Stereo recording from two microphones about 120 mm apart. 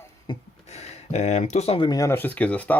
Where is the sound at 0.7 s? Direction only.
65° left (ahead or behind); by 1.9 s 50° left (ahead or behind).